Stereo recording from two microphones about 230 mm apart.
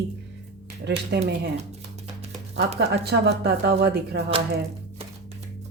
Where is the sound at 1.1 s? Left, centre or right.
Right.